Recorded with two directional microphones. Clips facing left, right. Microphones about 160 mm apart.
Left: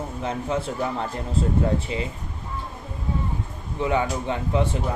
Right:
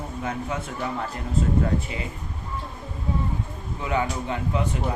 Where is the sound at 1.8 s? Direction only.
25° left (ahead or behind).